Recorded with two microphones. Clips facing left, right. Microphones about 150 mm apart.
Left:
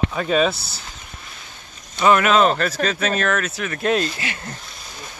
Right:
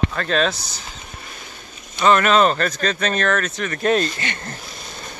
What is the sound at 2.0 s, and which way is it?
Speech, 10° left (ahead or behind).